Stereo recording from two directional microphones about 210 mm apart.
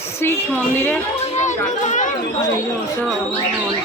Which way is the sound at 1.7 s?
35° left (ahead or behind).